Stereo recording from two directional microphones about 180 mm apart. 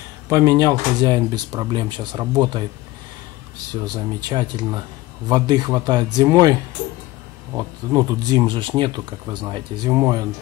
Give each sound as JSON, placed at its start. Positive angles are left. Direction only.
{"t": 0.3, "sound": "speech", "side_deg": -15}
{"t": 3.8, "sound": "speech", "side_deg": -20}